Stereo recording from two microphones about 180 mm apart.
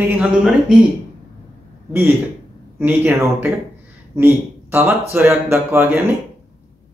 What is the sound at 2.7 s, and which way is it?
Speech, 10° right (ahead or behind).